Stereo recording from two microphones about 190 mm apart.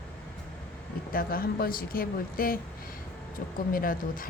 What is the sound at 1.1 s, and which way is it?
Speech, 50° left (ahead or behind).